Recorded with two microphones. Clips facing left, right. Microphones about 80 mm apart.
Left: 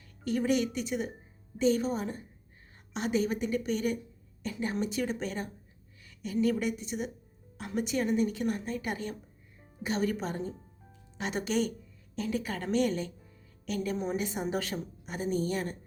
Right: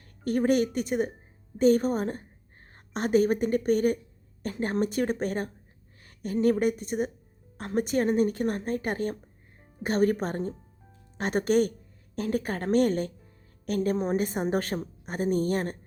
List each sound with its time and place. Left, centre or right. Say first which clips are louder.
0.3 s a woman's voice: right 4 dB; right